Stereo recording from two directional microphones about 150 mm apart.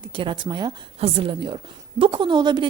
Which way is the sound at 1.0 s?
40° right (ahead or behind).